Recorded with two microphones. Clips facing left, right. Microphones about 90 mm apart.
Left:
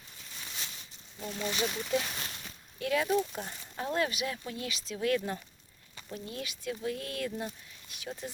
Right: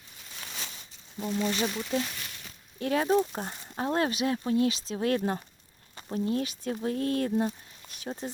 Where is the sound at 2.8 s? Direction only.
35° right (ahead or behind).